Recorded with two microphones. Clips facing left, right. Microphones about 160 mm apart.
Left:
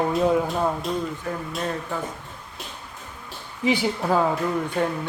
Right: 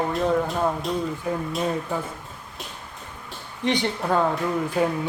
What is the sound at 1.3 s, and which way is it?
Speech, 15° right (ahead or behind).